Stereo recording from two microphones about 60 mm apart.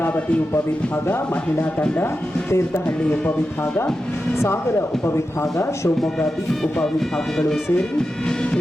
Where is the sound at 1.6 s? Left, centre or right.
Left.